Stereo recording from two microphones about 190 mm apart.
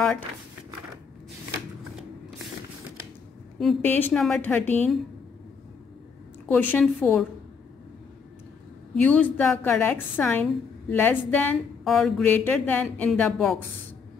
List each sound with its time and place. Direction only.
3.5 s a woman's voice: 5° left (ahead or behind)
6.5 s a woman's voice: 10° left (ahead or behind)
9.0 s a woman's voice: 10° left (ahead or behind)